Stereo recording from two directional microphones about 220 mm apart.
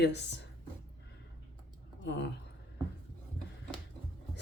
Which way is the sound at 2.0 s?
50° left (ahead or behind).